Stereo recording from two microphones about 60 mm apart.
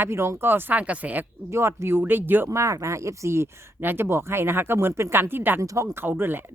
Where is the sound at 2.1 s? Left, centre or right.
Right.